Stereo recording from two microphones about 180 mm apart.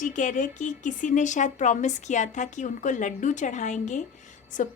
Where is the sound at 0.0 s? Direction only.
45° left (ahead or behind).